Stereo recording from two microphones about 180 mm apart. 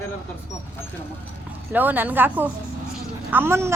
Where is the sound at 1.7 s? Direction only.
10° right (ahead or behind).